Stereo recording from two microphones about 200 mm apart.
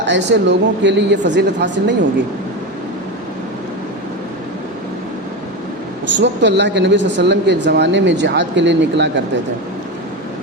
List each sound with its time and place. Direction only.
0.0 s speech: 60° right (ahead or behind)
6.1 s speech: 60° right (ahead or behind)